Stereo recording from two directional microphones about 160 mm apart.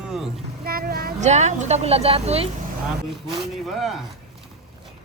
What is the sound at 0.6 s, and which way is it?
Child singing, 70° right (ahead or behind).